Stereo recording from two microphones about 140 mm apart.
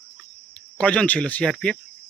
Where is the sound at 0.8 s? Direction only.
10° left (ahead or behind).